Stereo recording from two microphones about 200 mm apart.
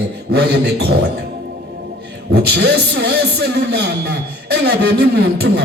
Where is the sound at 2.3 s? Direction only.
55° right (ahead or behind).